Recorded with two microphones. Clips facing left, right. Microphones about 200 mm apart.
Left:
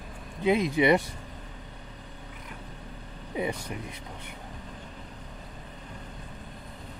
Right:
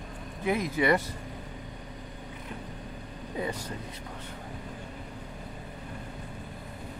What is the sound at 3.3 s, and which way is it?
Speech, 15° left (ahead or behind).